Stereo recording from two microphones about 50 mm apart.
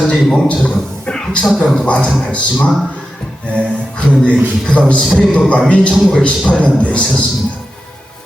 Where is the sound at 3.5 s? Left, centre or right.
Left.